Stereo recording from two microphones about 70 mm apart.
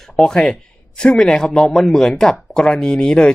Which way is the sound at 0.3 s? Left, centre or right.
Centre.